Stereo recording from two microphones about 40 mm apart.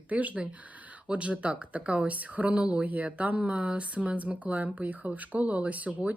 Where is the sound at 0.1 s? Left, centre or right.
Right.